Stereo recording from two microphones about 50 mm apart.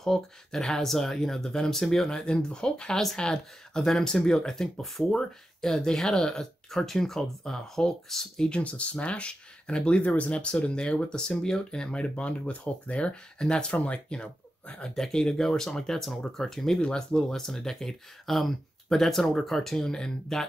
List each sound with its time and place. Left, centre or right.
0.0 s speech: centre
8.5 s speech: left